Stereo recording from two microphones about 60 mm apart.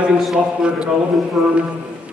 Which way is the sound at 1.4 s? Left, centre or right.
Centre.